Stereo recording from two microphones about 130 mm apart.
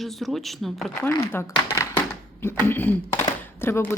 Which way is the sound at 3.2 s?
20° left (ahead or behind).